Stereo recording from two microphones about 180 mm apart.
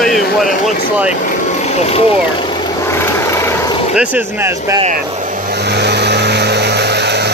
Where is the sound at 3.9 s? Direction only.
10° right (ahead or behind).